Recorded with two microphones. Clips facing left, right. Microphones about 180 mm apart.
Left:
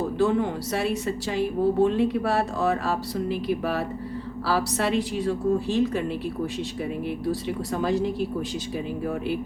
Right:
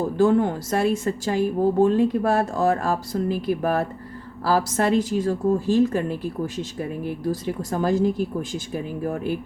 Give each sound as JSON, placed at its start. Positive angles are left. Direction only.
{"t": 0.2, "sound": "a woman's voice", "side_deg": -45}
{"t": 7.3, "sound": "a woman's voice", "side_deg": -45}